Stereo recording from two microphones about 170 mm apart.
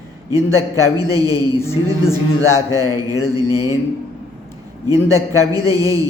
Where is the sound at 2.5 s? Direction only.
20° right (ahead or behind).